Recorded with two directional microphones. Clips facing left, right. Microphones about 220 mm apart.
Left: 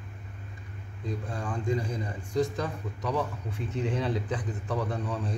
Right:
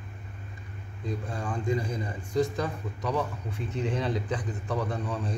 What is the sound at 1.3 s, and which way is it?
A man's voice, 10° right (ahead or behind).